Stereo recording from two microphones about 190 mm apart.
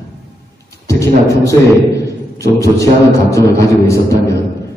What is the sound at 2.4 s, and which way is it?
Speech, 15° left (ahead or behind).